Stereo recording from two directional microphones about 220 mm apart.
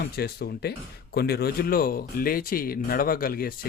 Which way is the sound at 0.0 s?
45° left (ahead or behind).